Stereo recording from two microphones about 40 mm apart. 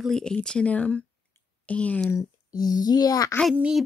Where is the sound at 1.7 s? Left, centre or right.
Left.